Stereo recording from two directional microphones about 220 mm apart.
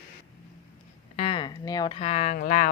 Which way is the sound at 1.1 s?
25° left (ahead or behind).